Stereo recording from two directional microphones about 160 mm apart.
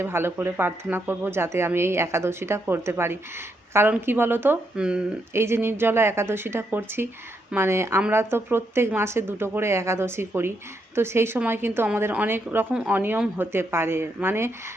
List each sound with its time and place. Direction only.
0.0 s a woman's voice: 15° right (ahead or behind)